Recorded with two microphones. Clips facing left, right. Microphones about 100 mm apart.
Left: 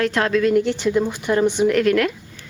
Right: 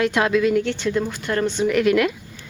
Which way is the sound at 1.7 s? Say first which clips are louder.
Even; 10° right (ahead or behind).